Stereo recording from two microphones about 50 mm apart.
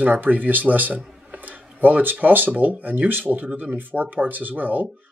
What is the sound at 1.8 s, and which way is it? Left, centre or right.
Speech, right.